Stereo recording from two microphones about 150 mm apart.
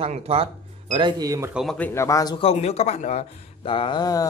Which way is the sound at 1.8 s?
15° left (ahead or behind).